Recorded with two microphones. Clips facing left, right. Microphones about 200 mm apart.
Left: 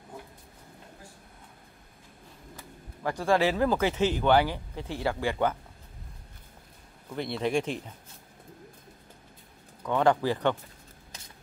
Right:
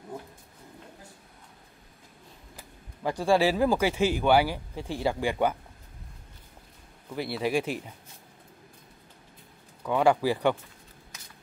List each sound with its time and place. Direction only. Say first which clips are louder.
3.0 s speech: right 2 dB; 15° right (ahead or behind)
7.2 s speech: even; 5° right (ahead or behind)
9.8 s speech: right 1 dB; 10° right (ahead or behind)
11.1 s shuffling cards: left 3 dB; 30° left (ahead or behind)